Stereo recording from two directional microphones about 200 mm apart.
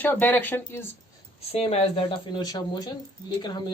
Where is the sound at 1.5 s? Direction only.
30° left (ahead or behind).